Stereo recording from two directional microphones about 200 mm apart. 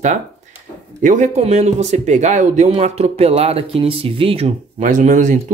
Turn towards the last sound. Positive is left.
turn(degrees=-40)  # may be behind; listen again after turning